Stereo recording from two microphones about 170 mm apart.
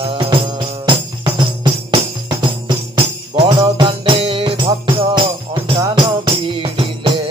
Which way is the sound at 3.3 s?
30° right (ahead or behind).